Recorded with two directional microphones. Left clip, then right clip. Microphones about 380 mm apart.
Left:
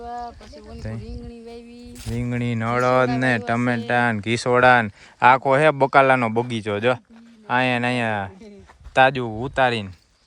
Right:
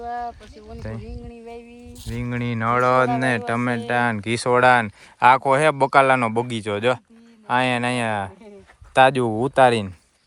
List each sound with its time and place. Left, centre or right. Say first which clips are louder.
0.0 s boat: right 3 dB; right
0.8 s speech: right 1 dB; centre
2.0 s speech: left 1 dB; centre